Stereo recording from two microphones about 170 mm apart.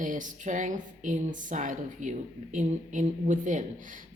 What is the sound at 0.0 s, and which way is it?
Speech, 50° right (ahead or behind).